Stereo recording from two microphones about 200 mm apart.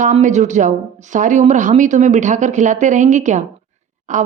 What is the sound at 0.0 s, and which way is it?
Speech, 35° right (ahead or behind).